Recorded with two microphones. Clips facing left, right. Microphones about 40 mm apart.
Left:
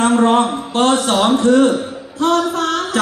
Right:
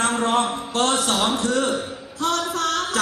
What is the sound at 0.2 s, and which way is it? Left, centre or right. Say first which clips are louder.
Music: left 7 dB; left.